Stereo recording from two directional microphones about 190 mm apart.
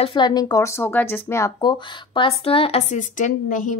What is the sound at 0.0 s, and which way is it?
Speech, 25° left (ahead or behind).